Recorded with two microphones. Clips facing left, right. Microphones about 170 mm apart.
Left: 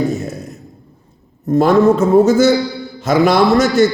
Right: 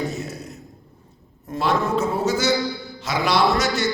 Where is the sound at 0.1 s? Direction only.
50° left (ahead or behind).